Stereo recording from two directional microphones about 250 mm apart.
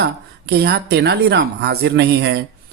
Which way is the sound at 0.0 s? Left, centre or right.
Right.